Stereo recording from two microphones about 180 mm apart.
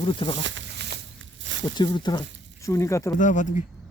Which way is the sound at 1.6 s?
25° left (ahead or behind).